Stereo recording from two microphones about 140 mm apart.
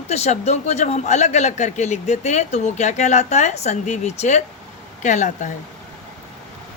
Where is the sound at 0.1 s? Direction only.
50° left (ahead or behind).